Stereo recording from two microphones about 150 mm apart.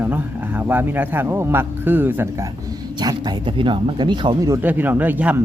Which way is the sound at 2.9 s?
30° right (ahead or behind).